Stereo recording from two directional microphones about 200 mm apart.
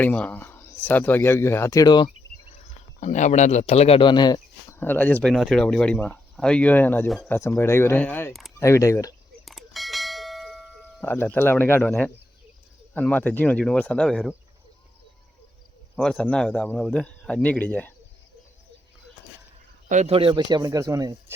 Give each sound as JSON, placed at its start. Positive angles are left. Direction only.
{"t": 0.0, "sound": "speech", "side_deg": 5}
{"t": 2.5, "sound": "speech", "side_deg": 35}
{"t": 8.5, "sound": "speech", "side_deg": 15}
{"t": 9.5, "sound": "a sound", "side_deg": 0}
{"t": 11.0, "sound": "speech", "side_deg": 10}
{"t": 16.0, "sound": "speech", "side_deg": 5}
{"t": 19.9, "sound": "speech", "side_deg": -35}